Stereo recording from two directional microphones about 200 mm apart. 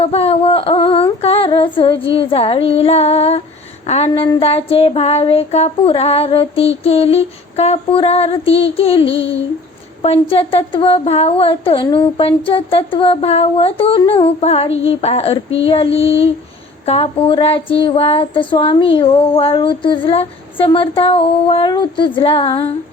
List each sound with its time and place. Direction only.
0.0 s speech: 30° left (ahead or behind)